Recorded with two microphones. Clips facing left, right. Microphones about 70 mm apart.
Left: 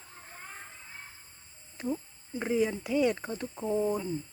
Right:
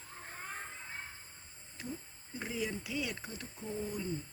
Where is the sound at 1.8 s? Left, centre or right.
Left.